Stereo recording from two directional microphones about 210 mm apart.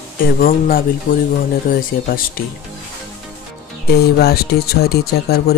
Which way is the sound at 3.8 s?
50° left (ahead or behind).